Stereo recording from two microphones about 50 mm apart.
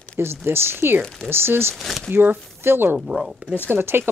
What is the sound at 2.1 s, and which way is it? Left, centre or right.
Speech, right.